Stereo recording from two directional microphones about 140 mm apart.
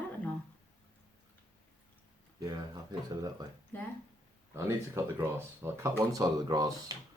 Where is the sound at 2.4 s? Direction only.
30° right (ahead or behind).